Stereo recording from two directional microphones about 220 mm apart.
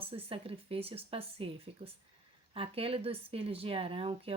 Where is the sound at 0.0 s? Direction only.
25° right (ahead or behind).